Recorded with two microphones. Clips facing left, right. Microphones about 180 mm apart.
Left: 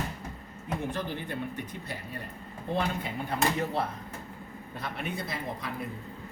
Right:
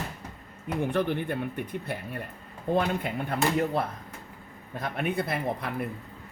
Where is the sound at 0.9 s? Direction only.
60° right (ahead or behind).